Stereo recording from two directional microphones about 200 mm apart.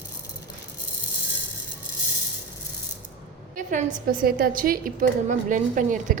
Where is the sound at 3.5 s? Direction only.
40° right (ahead or behind).